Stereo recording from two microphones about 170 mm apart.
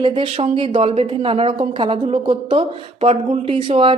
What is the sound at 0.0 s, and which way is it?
A woman's voice, 30° right (ahead or behind).